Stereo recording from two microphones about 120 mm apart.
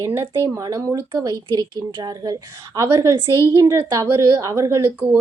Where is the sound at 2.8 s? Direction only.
25° right (ahead or behind).